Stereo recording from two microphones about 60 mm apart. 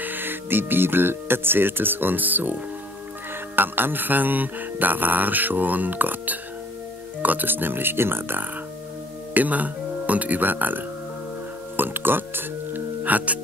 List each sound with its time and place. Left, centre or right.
0.0 s speech: right
9.3 s speech: right
11.7 s music: right